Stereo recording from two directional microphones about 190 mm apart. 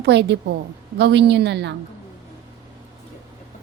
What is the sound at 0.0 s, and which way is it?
A woman's voice, 65° right (ahead or behind).